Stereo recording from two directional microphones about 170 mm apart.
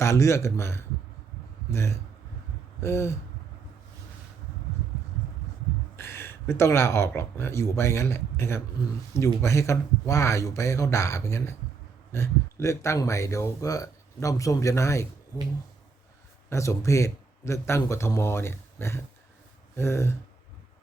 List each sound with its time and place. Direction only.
0.0 s speech: 15° left (ahead or behind)
6.0 s speech: 15° left (ahead or behind)
16.5 s speech: 15° left (ahead or behind)